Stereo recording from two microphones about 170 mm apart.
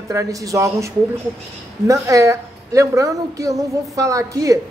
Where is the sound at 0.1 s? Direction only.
20° right (ahead or behind).